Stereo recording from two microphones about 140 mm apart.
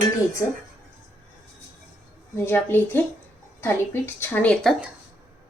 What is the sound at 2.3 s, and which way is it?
Speech, 15° left (ahead or behind).